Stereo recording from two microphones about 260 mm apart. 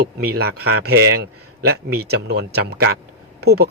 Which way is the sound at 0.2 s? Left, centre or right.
Right.